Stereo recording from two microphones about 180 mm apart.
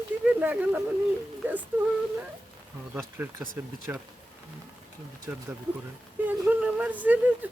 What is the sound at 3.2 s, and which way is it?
Speech, 15° right (ahead or behind).